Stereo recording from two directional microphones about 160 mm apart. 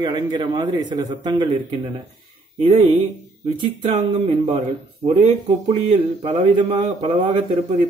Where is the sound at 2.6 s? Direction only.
35° right (ahead or behind).